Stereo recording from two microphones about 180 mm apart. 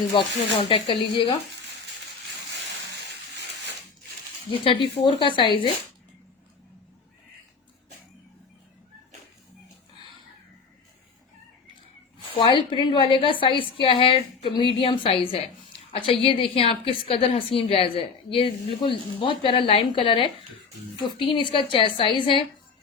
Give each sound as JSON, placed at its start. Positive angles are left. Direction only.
{"t": 0.1, "sound": "a woman's voice", "side_deg": 30}
{"t": 4.6, "sound": "a woman's voice", "side_deg": 25}
{"t": 12.3, "sound": "a woman's voice", "side_deg": 30}